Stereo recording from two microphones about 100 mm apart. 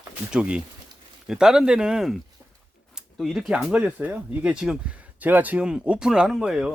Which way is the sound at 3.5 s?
10° right (ahead or behind).